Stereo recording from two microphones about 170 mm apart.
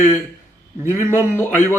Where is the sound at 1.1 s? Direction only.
10° left (ahead or behind).